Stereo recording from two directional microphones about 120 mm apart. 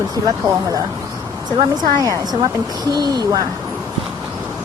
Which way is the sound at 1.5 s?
35° right (ahead or behind).